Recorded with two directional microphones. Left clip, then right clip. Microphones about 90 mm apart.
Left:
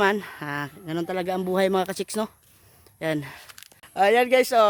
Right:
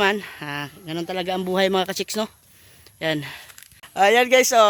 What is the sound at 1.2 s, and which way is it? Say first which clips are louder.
Speech: right 3 dB; 25° left (ahead or behind).